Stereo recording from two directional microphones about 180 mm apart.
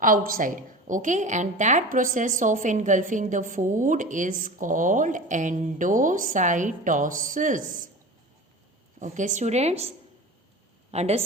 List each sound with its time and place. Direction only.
0.0 s a woman's voice: 50° right (ahead or behind)
9.0 s a woman's voice: 45° right (ahead or behind)
10.9 s a woman's voice: 35° right (ahead or behind)